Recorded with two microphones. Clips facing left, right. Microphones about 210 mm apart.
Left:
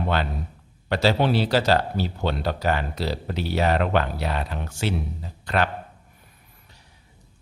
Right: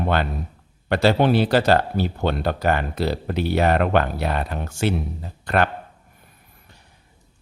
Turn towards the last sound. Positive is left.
turn(degrees=-55)  # may be behind; listen again after turning